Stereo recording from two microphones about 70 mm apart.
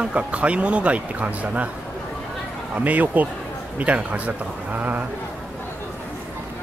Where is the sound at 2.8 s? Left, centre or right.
Right.